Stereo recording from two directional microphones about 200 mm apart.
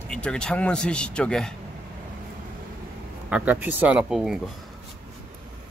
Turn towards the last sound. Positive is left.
turn(degrees=0)  # may be behind; listen again after turning